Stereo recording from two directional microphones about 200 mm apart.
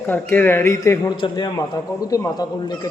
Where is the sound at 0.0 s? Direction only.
10° left (ahead or behind).